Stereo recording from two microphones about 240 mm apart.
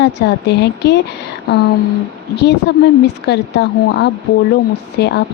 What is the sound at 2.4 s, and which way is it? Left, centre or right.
Speech, left.